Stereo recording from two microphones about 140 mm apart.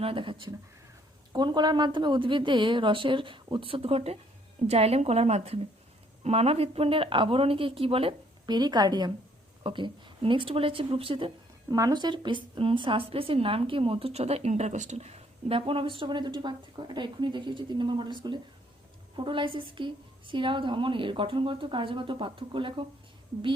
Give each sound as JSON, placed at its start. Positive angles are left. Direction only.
{"t": 0.0, "sound": "a woman's voice", "side_deg": -40}
{"t": 8.4, "sound": "a woman's voice", "side_deg": -30}
{"t": 11.7, "sound": "a woman's voice", "side_deg": -25}